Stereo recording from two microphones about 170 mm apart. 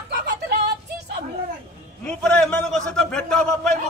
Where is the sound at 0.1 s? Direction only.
80° right.